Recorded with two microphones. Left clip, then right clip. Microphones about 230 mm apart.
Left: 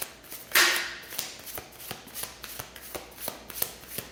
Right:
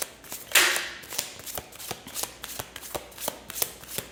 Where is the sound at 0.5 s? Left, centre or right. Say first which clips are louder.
Right 1 dB; right.